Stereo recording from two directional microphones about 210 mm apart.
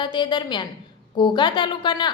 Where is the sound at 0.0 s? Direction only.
20° left (ahead or behind).